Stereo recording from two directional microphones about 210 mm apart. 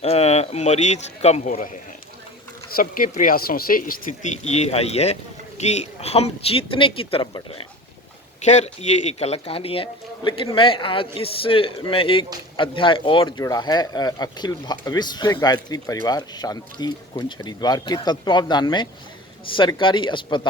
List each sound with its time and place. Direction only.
0.0 s speech: 30° left (ahead or behind)